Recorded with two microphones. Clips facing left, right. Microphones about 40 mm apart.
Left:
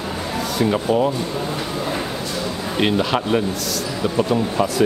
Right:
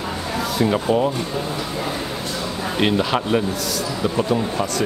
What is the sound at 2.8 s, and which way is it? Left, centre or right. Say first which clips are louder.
Speech: even; centre.